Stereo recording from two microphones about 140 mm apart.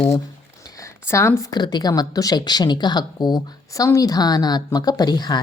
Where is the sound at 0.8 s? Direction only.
20° left (ahead or behind).